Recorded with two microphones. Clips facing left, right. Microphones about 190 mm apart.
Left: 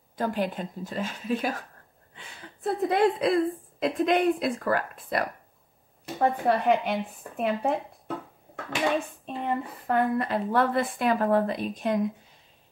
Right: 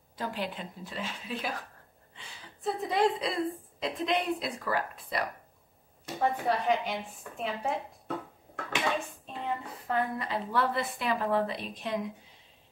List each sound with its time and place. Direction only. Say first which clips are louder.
0.1 s a woman's voice: left 7 dB; 50° left (ahead or behind)
9.0 s a woman's voice: left 5 dB; 55° left (ahead or behind)